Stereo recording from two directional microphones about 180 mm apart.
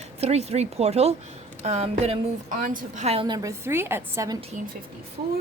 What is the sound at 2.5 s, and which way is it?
A woman's voice, 50° right (ahead or behind).